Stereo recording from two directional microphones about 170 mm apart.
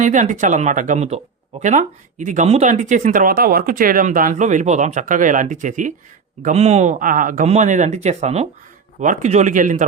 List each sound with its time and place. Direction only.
0.0 s speech: 45° right (ahead or behind)